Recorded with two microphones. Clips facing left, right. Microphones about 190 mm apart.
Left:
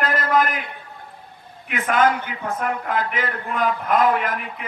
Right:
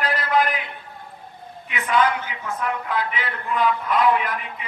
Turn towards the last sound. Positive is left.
turn(degrees=50)  # may be behind; listen again after turning